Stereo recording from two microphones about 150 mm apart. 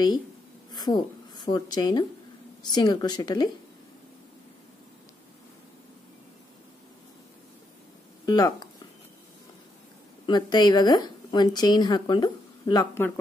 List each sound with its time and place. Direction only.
0.7 s speech: 25° left (ahead or behind)
8.3 s speech: 25° left (ahead or behind)
10.2 s speech: 30° left (ahead or behind)